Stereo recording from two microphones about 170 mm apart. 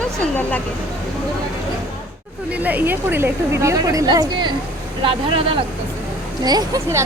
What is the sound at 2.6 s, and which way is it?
A woman's voice, 10° right (ahead or behind).